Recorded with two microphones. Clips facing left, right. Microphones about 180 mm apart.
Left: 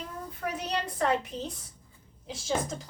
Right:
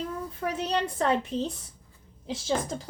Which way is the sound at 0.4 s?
30° right (ahead or behind).